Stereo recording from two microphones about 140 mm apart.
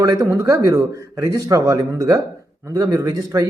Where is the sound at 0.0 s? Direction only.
25° right (ahead or behind).